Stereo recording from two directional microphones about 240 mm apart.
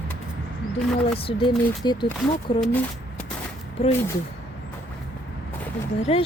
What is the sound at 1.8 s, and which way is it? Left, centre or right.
Speech, centre.